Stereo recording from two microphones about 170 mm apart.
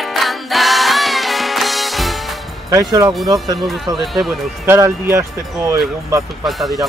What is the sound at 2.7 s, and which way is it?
Speech, 20° right (ahead or behind).